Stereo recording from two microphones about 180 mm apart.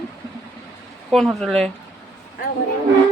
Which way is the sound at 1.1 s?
Centre (ahead or behind).